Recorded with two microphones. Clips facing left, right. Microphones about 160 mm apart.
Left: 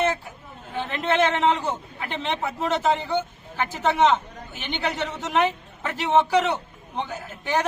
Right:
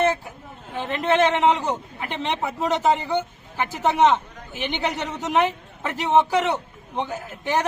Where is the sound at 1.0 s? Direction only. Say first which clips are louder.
Right 2 dB; 15° right (ahead or behind).